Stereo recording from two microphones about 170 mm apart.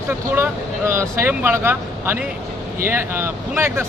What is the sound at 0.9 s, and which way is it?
Speech, 15° right (ahead or behind).